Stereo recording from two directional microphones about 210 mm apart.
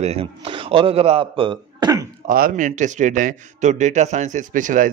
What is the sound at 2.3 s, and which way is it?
A man's voice, 40° right (ahead or behind).